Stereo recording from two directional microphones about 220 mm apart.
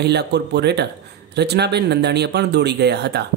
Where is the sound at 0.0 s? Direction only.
50° right (ahead or behind).